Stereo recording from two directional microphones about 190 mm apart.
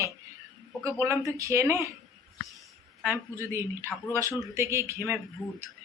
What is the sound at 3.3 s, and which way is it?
Speech, 15° right (ahead or behind).